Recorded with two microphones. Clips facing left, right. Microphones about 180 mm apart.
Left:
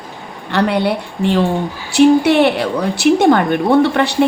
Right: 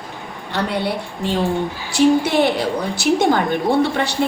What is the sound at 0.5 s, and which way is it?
A woman's voice, 70° left (ahead or behind).